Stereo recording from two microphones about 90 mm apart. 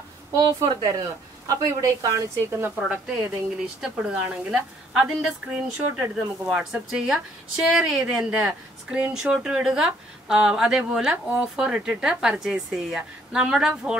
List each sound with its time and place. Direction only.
0.3 s a woman's voice: 35° right (ahead or behind)
2.5 s speech: 25° right (ahead or behind)
3.8 s speech: 5° right (ahead or behind)